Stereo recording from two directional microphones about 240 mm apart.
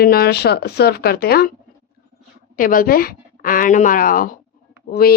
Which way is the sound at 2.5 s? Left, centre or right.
Left.